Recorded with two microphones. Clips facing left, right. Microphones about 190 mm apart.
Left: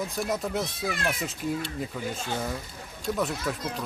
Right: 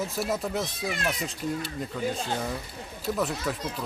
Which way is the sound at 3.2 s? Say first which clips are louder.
Even; centre (ahead or behind).